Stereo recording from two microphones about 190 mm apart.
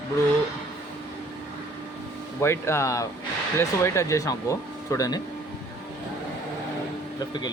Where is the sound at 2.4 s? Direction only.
15° left (ahead or behind).